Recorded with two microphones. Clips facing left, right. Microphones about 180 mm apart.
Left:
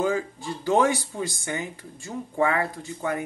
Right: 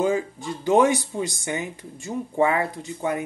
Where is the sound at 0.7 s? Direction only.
20° right (ahead or behind).